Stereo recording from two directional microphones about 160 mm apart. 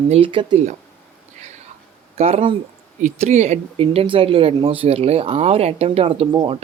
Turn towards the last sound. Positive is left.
turn(degrees=-30)  # may be behind; listen again after turning